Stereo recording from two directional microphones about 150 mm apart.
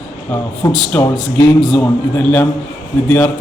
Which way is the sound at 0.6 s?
25° left (ahead or behind).